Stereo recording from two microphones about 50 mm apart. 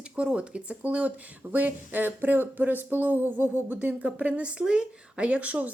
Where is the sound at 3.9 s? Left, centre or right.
Right.